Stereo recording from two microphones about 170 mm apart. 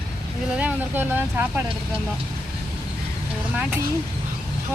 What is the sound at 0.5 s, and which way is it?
Speech, 10° right (ahead or behind).